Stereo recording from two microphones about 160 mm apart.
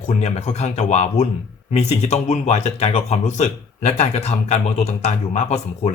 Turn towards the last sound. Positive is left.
turn(degrees=45)  # may be behind; listen again after turning